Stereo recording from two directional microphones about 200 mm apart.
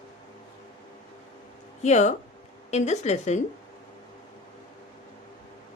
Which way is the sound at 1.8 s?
35° left (ahead or behind).